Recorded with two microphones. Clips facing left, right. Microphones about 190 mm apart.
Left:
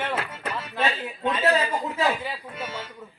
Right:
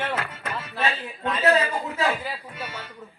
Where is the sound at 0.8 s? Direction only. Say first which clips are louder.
Left 1 dB; 20° left (ahead or behind).